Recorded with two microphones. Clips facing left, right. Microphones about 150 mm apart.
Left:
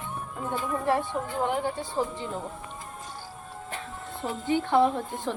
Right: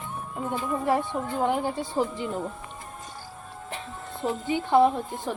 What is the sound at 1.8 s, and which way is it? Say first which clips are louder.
Speech: right 3 dB; 15° right (ahead or behind).